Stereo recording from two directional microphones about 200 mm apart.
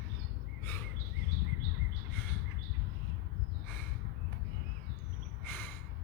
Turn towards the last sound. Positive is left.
turn(degrees=10)  # may be behind; listen again after turning